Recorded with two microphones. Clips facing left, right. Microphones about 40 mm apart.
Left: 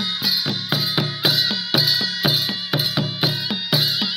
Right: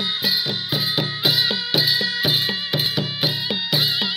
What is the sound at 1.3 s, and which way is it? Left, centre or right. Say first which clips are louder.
Music: even; centre.